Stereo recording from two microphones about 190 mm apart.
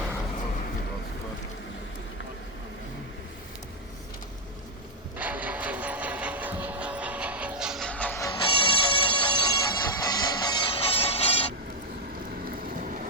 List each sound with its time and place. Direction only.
5.1 s music: 10° right (ahead or behind); by 8.3 s 10° left (ahead or behind)
8.3 s music: 25° left (ahead or behind)